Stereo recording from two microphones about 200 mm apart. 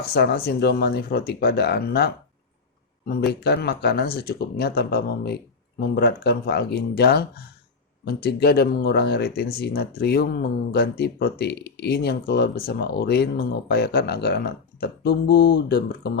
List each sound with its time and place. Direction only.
0.0 s speech: 55° left (ahead or behind)
3.4 s speech: 55° left (ahead or behind)